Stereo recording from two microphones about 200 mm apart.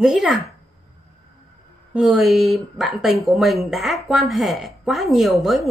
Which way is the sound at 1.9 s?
5° right (ahead or behind).